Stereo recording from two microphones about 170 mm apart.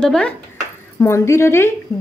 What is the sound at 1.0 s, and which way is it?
Speech, 15° left (ahead or behind).